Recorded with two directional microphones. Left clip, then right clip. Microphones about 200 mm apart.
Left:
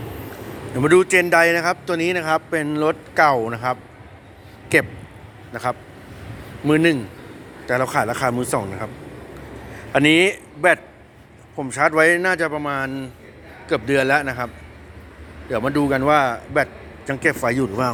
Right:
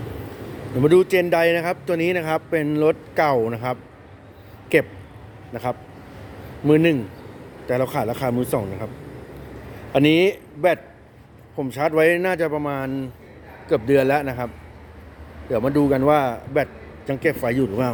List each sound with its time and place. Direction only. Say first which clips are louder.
0.8 s a man's voice: left 1 dB; 20° right (ahead or behind)
6.7 s a man's voice: even; 20° right (ahead or behind)
9.9 s a man's voice: left 2 dB; 25° right (ahead or behind)